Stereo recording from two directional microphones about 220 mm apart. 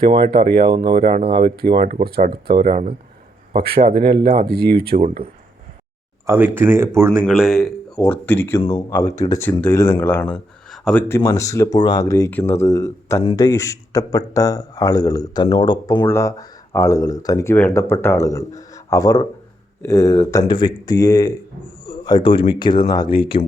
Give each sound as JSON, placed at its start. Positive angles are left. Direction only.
{"t": 0.1, "sound": "speech", "side_deg": -45}
{"t": 4.9, "sound": "speech", "side_deg": -35}
{"t": 6.2, "sound": "speech", "side_deg": -10}
{"t": 11.2, "sound": "speech", "side_deg": 15}